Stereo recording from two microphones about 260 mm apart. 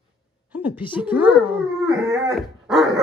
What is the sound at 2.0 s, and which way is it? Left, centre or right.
Dog, centre.